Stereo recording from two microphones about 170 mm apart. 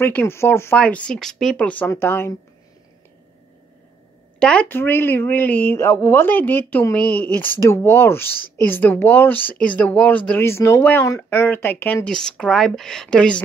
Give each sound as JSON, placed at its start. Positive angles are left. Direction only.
{"t": 0.0, "sound": "speech", "side_deg": 10}
{"t": 4.4, "sound": "speech", "side_deg": 5}